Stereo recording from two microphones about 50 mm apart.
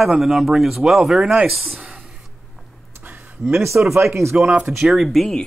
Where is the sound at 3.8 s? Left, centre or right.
Right.